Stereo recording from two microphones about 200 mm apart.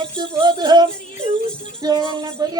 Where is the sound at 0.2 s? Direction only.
20° right (ahead or behind).